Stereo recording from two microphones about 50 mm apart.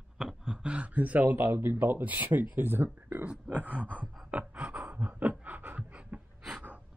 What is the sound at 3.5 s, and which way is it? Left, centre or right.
Speech, right.